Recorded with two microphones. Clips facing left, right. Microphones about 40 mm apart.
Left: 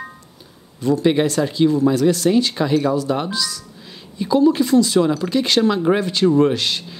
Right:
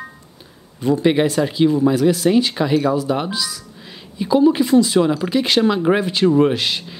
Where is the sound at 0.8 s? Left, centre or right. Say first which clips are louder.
Right 1 dB; centre.